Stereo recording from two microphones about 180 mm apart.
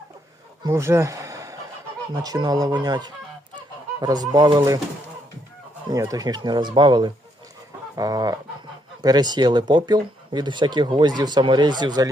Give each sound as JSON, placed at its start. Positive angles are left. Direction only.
{"t": 0.6, "sound": "speech", "side_deg": -15}
{"t": 5.9, "sound": "speech", "side_deg": -20}